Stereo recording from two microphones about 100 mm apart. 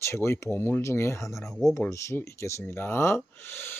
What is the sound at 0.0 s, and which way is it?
Speech, 25° left (ahead or behind).